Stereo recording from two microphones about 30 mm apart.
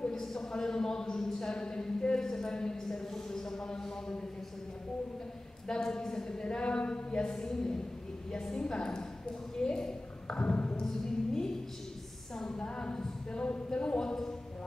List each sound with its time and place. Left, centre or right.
0.1 s a sound: centre
0.5 s speech: left
2.1 s speech: centre
5.7 s speech: left
10.2 s speech: left
10.5 s speech: left
10.8 s music: left
12.5 s speech: left